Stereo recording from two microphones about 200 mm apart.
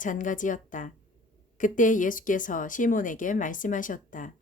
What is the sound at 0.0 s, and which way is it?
Speech, 40° left (ahead or behind).